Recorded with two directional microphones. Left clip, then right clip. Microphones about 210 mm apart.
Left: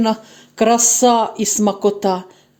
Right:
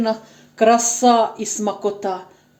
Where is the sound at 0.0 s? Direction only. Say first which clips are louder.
Left 3 dB; 50° left (ahead or behind).